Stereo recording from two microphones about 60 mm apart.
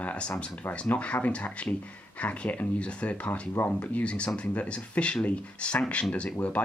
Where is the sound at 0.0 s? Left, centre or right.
Left.